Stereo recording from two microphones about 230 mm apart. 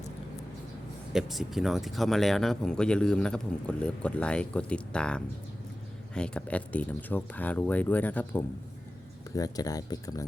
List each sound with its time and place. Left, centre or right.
1.1 s speech: centre